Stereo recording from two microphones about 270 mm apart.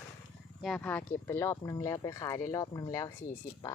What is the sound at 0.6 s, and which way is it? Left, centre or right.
Speech, centre.